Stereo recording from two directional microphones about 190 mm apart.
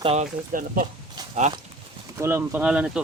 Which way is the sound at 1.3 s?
35° right (ahead or behind).